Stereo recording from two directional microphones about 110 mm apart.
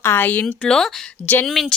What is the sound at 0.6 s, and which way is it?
Speech, 5° left (ahead or behind).